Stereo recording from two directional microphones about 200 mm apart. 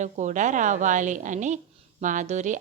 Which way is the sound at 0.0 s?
35° right (ahead or behind).